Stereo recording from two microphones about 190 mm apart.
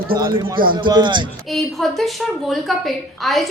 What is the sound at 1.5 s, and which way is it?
A woman's voice, centre (ahead or behind).